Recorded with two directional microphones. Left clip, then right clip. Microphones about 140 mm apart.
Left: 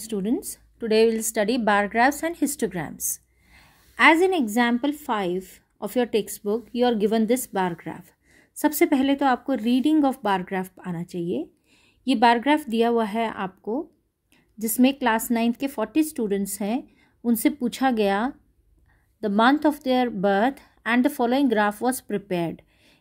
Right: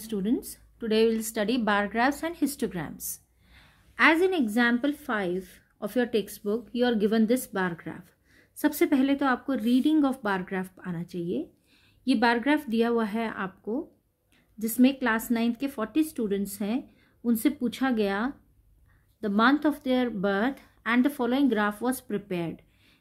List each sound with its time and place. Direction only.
0.0 s a woman's voice: 35° left (ahead or behind); by 22.9 s 50° left (ahead or behind)